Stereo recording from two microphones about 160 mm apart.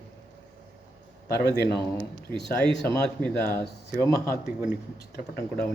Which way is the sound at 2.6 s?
90° left.